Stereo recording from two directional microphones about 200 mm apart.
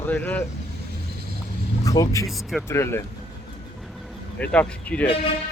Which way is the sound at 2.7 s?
15° left (ahead or behind).